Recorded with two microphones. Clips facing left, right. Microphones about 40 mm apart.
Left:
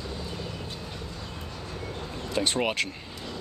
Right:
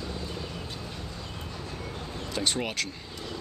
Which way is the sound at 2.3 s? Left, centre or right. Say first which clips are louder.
Left 4 dB; centre.